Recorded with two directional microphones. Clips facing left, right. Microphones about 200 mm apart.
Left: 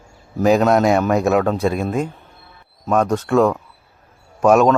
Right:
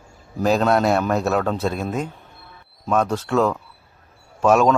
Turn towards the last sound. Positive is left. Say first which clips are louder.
# left 3 dB
turn(degrees=10)  # may be behind; listen again after turning